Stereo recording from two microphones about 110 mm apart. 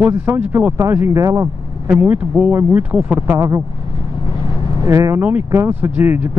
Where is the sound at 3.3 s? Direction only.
30° right (ahead or behind).